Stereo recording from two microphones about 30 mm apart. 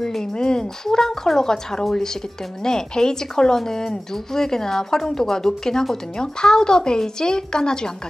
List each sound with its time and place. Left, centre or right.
0.2 s speech: left